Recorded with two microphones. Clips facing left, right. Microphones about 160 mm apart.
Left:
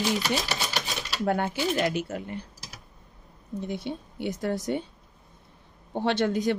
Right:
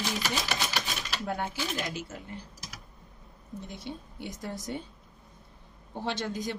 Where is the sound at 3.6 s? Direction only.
65° left (ahead or behind).